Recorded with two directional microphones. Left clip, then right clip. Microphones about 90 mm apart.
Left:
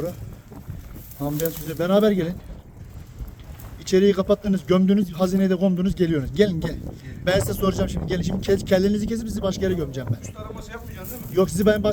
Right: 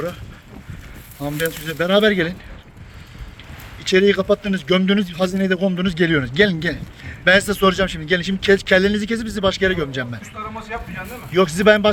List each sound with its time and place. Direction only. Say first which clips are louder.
1.4 s a man's voice: right 5 dB; 25° left (ahead or behind)
3.8 s a man's voice: right 3 dB; 35° left (ahead or behind)
11.3 s a man's voice: right 6 dB; 30° left (ahead or behind)